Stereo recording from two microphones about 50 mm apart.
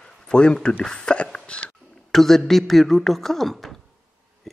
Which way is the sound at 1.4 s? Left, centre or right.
Left.